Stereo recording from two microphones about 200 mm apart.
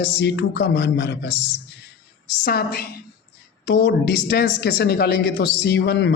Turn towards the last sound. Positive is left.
turn(degrees=60)  # may be behind; listen again after turning